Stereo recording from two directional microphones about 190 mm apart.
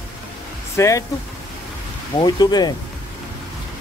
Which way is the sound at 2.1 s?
20° left (ahead or behind).